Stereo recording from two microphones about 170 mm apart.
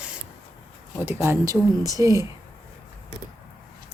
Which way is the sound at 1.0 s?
15° right (ahead or behind).